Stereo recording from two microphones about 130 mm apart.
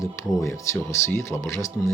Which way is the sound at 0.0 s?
25° left (ahead or behind).